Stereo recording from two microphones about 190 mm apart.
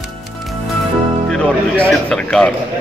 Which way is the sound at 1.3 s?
5° left (ahead or behind).